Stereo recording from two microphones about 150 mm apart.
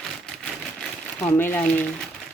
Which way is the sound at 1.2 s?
15° left (ahead or behind).